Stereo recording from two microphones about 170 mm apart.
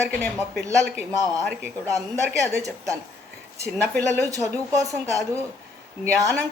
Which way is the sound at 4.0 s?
20° right (ahead or behind).